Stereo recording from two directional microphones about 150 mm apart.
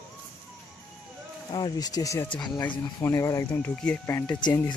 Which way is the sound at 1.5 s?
30° left (ahead or behind).